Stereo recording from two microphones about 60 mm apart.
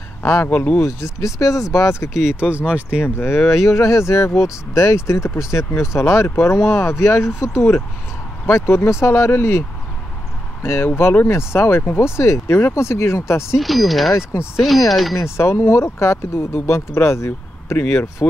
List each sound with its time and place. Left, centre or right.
0.2 s speech: left
0.5 s speech: left
0.7 s speech: left
2.1 s speech: centre
3.2 s speech: left
3.6 s speech: left
13.6 s speech: centre
14.3 s speech: left
14.9 s speech: centre
15.1 s speech: left